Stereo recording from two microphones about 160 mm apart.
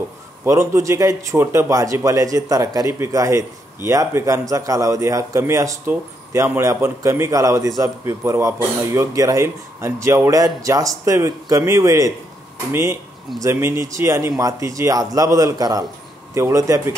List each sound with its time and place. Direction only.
0.5 s speech: 20° right (ahead or behind)